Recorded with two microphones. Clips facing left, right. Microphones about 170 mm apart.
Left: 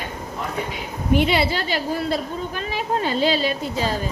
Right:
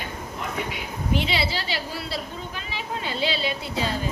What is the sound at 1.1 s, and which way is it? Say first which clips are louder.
A woman's voice: left 7 dB; 55° left (ahead or behind).